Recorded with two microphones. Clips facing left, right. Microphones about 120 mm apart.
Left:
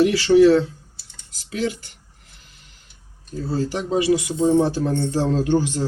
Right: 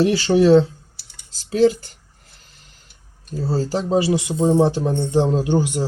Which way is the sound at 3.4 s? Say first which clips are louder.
Right 2 dB; 35° right (ahead or behind).